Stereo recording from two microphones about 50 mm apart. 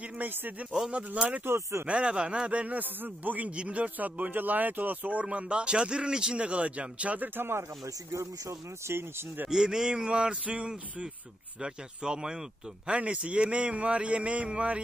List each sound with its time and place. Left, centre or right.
0.0 s speech: right
1.4 s speech: right
1.9 s speech: right
7.3 s speech: right
8.1 s speech: right
9.5 s speech: centre
12.9 s speech: right